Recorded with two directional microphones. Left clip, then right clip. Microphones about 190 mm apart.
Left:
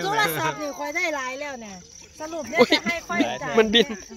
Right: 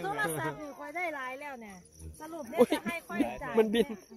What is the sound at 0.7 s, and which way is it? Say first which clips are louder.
Speech: left 10 dB; 50° left (ahead or behind).